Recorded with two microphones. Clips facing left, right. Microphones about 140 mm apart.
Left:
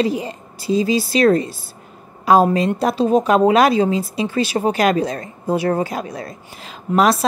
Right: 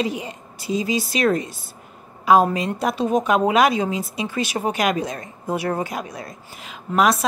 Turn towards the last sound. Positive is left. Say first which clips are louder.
# left 3 dB
turn(degrees=30)  # may be behind; listen again after turning